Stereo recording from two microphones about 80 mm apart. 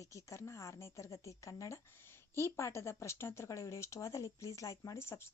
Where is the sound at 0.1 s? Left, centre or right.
Left.